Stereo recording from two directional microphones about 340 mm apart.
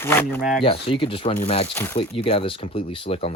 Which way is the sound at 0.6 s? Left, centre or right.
Centre.